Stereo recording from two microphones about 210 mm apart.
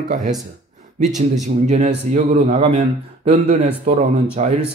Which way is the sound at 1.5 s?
35° right (ahead or behind).